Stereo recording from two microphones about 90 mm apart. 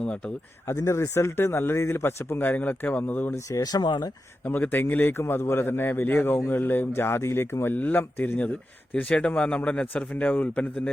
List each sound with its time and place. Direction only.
0.7 s a man's voice: 30° left (ahead or behind)
3.3 s speech: 40° left (ahead or behind)
4.4 s a man's voice: 20° left (ahead or behind)